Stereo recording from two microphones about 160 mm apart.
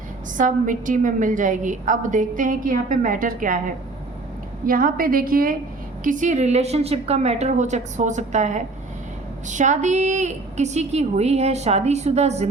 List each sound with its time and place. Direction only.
0.3 s a woman's voice: 55° right (ahead or behind)
4.6 s a woman's voice: 60° right (ahead or behind)
6.0 s a woman's voice: 55° right (ahead or behind)